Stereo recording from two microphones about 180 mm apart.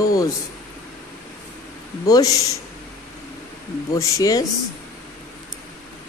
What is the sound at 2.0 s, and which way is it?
Speech, 20° left (ahead or behind).